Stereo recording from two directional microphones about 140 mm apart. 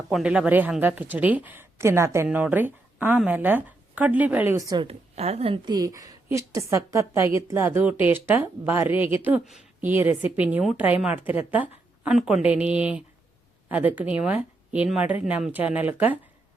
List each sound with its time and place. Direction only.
0.1 s a woman's voice: 5° right (ahead or behind)
4.5 s a woman's voice: 30° right (ahead or behind)
4.9 s a woman's voice: 50° right (ahead or behind)
5.6 s a woman's voice: 25° right (ahead or behind)